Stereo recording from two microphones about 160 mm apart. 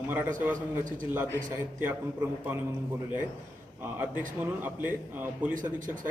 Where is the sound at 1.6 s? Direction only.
15° right (ahead or behind).